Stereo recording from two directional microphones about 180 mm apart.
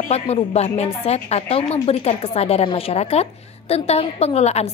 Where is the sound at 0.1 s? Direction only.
35° left (ahead or behind).